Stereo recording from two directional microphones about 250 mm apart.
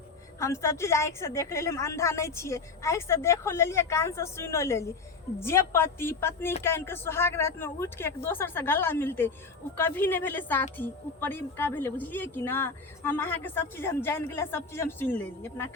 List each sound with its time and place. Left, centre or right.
0.3 s a woman's voice: centre